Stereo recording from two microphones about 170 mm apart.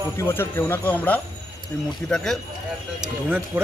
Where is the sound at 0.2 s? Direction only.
15° left (ahead or behind).